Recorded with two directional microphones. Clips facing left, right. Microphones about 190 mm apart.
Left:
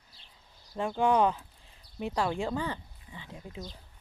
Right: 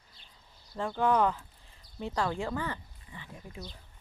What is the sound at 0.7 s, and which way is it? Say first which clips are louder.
Speech: left 1 dB; 10° left (ahead or behind).